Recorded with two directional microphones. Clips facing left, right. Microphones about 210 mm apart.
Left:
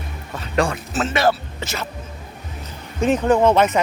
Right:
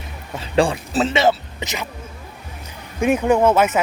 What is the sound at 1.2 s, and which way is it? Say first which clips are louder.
Speech: right 1 dB; 20° right (ahead or behind).